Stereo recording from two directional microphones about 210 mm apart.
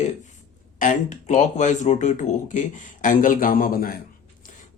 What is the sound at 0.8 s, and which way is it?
Speech, 35° left (ahead or behind).